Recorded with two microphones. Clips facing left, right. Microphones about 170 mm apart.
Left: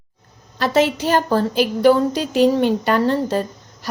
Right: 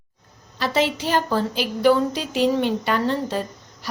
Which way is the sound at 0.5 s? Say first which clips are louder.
Left 5 dB; 50° left (ahead or behind).